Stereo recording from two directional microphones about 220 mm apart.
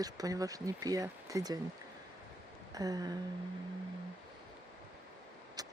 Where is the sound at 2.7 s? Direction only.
15° right (ahead or behind).